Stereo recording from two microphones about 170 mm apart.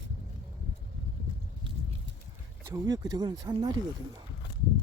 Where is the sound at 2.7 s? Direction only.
20° right (ahead or behind).